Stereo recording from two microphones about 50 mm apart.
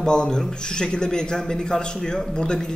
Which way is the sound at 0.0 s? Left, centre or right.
Centre.